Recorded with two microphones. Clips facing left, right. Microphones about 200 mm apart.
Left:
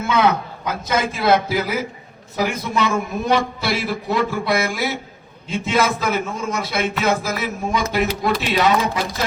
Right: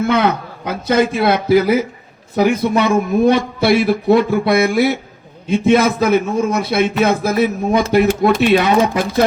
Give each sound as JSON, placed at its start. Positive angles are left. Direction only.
{"t": 0.1, "sound": "a man's voice", "side_deg": -60}